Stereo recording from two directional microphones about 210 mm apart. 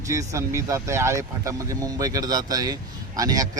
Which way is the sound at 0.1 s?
15° right (ahead or behind).